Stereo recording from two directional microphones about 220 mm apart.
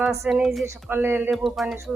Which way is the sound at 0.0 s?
15° right (ahead or behind).